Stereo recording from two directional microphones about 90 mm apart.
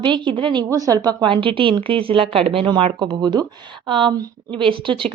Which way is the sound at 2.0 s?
85° right.